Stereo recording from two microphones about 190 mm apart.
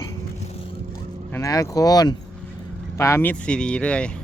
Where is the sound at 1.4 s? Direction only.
15° left (ahead or behind).